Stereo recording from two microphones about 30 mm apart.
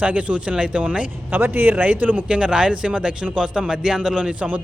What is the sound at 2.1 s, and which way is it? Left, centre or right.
Speech, right.